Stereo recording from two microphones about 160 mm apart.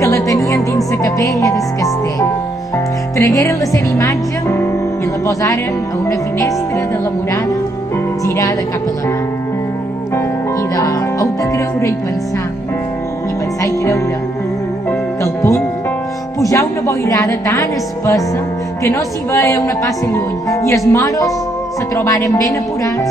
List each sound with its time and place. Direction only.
0.0 s music: 20° left (ahead or behind)
3.2 s speech: 20° left (ahead or behind)
10.8 s music: 20° left (ahead or behind)
14.9 s music: 15° left (ahead or behind)
16.3 s a woman's voice: 20° left (ahead or behind)